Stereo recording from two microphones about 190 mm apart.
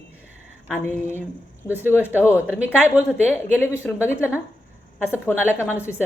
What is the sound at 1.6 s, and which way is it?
A woman's voice, 10° right (ahead or behind).